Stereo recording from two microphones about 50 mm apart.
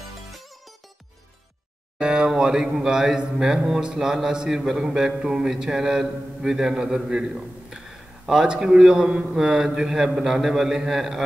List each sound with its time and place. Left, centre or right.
2.0 s a man's voice: centre
8.5 s a man's voice: centre